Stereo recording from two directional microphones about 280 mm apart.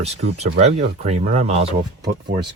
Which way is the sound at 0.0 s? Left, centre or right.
Right.